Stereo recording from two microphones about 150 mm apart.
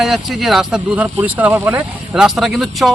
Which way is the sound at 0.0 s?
Centre (ahead or behind).